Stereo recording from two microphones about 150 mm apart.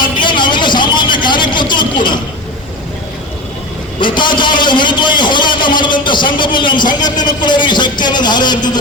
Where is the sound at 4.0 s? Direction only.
30° left (ahead or behind).